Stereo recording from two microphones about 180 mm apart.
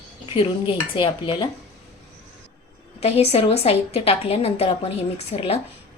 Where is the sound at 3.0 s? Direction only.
35° left (ahead or behind).